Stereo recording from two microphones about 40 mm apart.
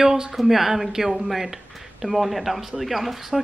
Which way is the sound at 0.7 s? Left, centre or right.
Centre.